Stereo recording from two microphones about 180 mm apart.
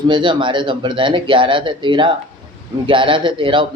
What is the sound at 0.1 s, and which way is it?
Speech, 25° right (ahead or behind).